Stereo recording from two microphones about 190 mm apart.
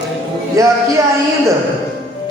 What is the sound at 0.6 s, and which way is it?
Speech, 15° right (ahead or behind).